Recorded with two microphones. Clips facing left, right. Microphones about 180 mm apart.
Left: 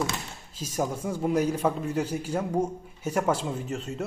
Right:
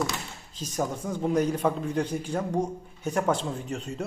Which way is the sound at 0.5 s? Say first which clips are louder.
Left 1 dB; 10° left (ahead or behind).